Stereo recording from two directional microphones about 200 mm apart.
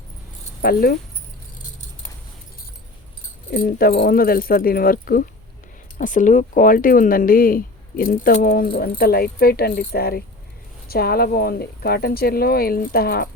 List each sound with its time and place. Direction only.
0.6 s speech: 50° left (ahead or behind)
3.5 s speech: 45° left (ahead or behind)